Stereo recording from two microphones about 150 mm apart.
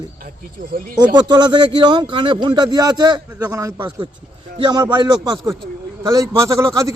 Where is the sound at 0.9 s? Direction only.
30° right (ahead or behind).